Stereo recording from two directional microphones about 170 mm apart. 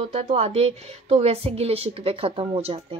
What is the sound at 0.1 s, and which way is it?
A woman's voice, 35° right (ahead or behind).